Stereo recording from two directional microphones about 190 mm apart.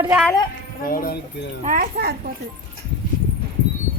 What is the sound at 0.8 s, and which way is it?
Speech, 50° left (ahead or behind).